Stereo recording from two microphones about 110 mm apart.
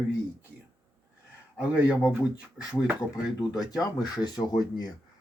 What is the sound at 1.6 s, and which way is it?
Speech, 10° right (ahead or behind).